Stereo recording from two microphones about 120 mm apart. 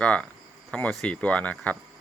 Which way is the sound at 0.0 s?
10° left (ahead or behind).